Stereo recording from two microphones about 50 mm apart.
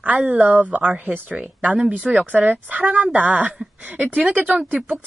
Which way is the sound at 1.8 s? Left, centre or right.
Centre.